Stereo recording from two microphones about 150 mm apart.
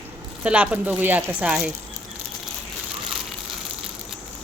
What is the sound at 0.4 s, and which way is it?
Speech, 10° right (ahead or behind).